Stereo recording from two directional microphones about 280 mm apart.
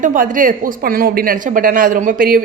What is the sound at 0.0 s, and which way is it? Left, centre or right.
A woman's voice, right.